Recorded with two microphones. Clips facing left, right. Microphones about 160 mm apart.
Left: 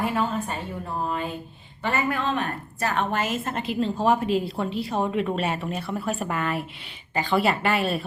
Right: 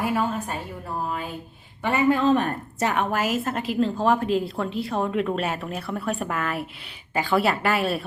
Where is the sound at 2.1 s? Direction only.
45° right (ahead or behind).